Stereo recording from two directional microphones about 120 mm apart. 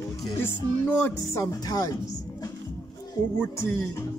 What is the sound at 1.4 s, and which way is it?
Speech, 30° left (ahead or behind).